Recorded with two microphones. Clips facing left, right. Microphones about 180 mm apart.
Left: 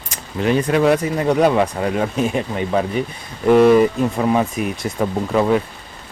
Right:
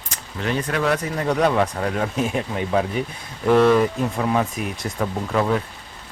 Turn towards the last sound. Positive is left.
turn(degrees=10)  # may be behind; listen again after turning